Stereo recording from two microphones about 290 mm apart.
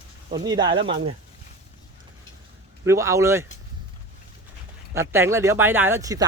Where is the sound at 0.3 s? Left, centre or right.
Centre.